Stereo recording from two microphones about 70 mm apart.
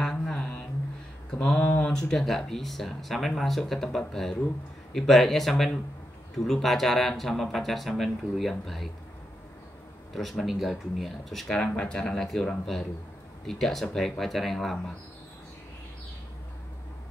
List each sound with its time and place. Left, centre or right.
0.0 s a sound: centre
1.4 s speech: centre
10.1 s speech: centre
11.6 s speech: centre